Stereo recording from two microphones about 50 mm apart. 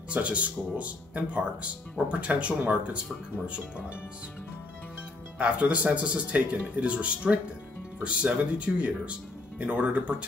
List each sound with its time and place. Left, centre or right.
0.1 s speech: right
5.4 s speech: right